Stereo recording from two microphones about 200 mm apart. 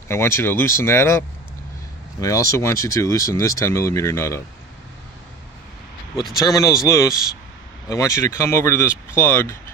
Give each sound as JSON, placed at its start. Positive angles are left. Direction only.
{"t": 0.1, "sound": "speech", "side_deg": 10}
{"t": 6.4, "sound": "speech", "side_deg": 15}